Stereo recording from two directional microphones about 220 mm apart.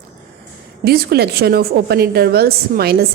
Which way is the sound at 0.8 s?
45° right (ahead or behind).